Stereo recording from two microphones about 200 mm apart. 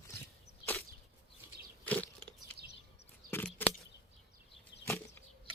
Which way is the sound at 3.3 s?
10° left (ahead or behind).